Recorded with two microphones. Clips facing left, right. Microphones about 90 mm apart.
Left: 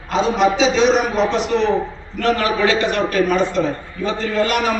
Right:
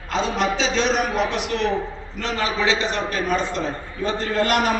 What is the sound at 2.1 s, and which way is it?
A man's voice, 20° right (ahead or behind).